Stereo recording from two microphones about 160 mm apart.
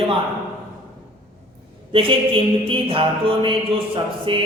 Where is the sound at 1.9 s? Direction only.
30° right (ahead or behind).